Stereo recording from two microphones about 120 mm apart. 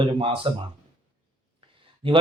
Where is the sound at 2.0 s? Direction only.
50° right (ahead or behind).